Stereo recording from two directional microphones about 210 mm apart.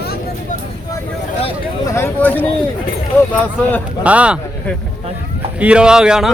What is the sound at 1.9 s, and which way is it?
Speech, 10° left (ahead or behind).